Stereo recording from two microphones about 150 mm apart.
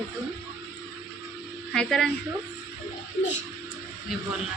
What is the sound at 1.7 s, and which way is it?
Speech, 5° left (ahead or behind).